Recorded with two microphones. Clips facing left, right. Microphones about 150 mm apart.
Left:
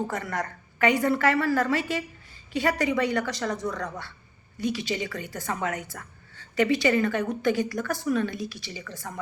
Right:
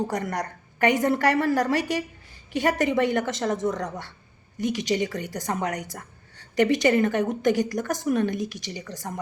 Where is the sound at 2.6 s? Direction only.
45° right (ahead or behind).